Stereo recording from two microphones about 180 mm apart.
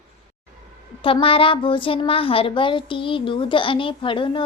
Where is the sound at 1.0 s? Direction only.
30° left (ahead or behind).